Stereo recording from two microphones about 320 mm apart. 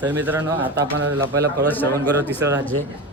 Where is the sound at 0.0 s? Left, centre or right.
Centre.